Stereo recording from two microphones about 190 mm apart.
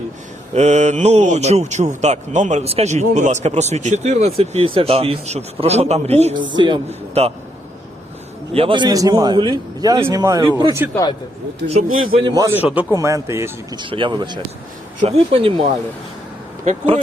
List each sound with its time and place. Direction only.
0.5 s a man's voice: 35° right (ahead or behind)
8.5 s a man's voice: 25° right (ahead or behind)
12.1 s a man's voice: 20° right (ahead or behind)
16.6 s a man's voice: 30° right (ahead or behind)